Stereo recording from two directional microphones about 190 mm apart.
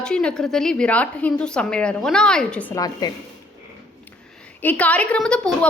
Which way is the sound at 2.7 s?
20° left (ahead or behind).